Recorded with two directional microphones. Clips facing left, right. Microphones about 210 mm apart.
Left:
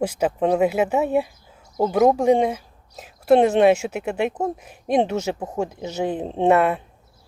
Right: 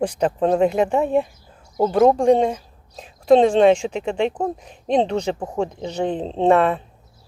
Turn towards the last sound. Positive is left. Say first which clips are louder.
# right 1 dB
turn(degrees=5)  # may be behind; listen again after turning